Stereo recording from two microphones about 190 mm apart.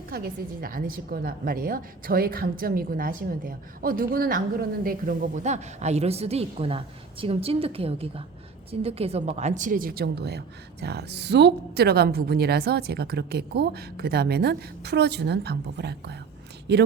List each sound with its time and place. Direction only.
0.1 s a woman's voice: 50° right (ahead or behind)